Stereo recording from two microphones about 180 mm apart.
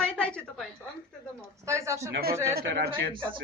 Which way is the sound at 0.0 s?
5° left (ahead or behind).